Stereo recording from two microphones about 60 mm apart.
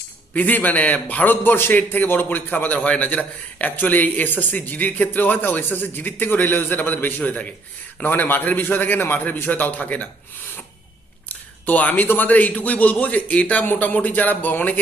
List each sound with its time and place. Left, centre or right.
0.3 s speech: left
11.3 s a man's voice: left